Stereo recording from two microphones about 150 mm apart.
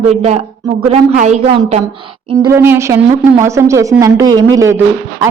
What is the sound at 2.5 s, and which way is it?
A man's voice, 15° right (ahead or behind).